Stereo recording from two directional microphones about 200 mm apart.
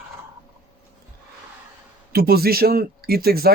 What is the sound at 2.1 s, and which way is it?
Speech, 50° right (ahead or behind).